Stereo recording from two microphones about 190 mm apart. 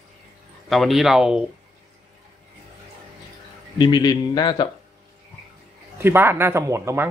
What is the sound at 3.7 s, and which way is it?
Speech, 20° left (ahead or behind).